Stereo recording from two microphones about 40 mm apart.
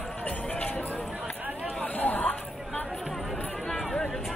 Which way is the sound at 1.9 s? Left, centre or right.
Left.